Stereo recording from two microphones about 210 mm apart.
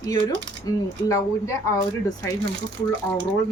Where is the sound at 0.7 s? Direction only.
15° left (ahead or behind).